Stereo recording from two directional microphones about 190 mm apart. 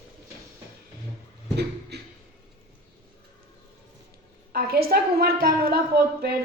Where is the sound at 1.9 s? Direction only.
60° right (ahead or behind).